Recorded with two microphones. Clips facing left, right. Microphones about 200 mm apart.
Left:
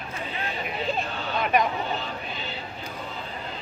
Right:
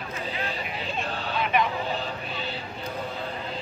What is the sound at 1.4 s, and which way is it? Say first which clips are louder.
Vehicle: left 2 dB; 45° left (ahead or behind).